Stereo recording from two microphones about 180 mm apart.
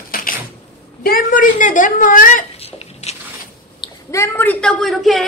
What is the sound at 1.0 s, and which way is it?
A woman's voice, 50° left (ahead or behind).